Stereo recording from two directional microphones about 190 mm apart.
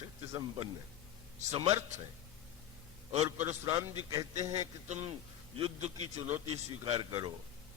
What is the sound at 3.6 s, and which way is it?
Speech, 20° right (ahead or behind).